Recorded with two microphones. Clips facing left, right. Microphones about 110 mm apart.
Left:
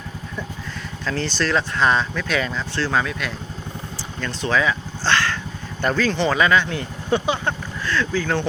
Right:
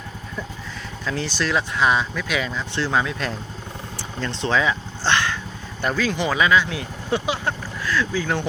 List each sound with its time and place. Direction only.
1.0 s speech: 10° right (ahead or behind)
2.7 s speech: 15° right (ahead or behind)
4.2 s speech: 25° right (ahead or behind)
5.8 s speech: 5° right (ahead or behind)